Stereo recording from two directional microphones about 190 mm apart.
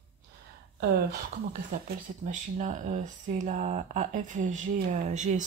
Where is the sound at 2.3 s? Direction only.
40° right (ahead or behind).